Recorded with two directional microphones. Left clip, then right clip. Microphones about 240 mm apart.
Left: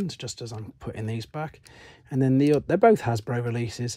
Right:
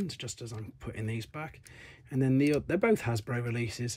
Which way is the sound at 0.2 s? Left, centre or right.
Centre.